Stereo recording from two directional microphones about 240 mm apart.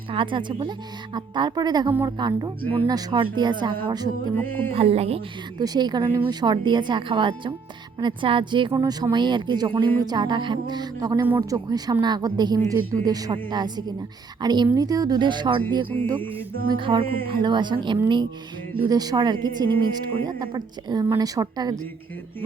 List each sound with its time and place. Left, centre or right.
0.1 s speech: right
4.4 s music: centre
4.7 s speech: right
15.9 s music: centre
16.7 s speech: centre